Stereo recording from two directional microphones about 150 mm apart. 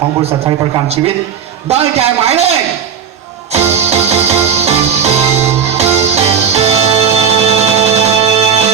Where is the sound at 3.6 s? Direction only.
15° right (ahead or behind).